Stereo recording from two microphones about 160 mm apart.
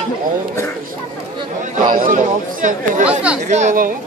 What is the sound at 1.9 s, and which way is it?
Speech, 60° right (ahead or behind).